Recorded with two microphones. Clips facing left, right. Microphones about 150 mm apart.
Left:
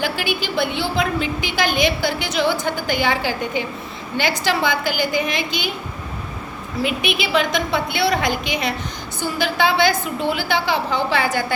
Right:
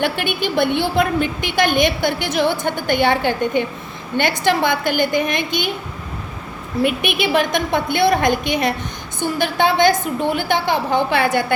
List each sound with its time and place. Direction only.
0.0 s a woman's voice: 55° right (ahead or behind)
6.8 s a woman's voice: 55° right (ahead or behind)